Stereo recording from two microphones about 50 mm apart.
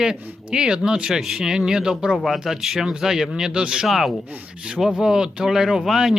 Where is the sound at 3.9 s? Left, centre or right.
Centre.